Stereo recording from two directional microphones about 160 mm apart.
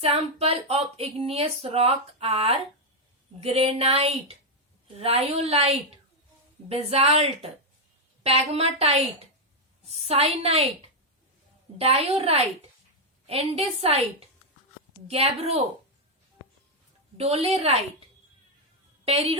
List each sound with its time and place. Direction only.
0.0 s speech: 40° right (ahead or behind)
11.8 s speech: 40° right (ahead or behind)
15.0 s speech: 40° right (ahead or behind)
17.2 s speech: 40° right (ahead or behind)
19.0 s speech: 35° right (ahead or behind)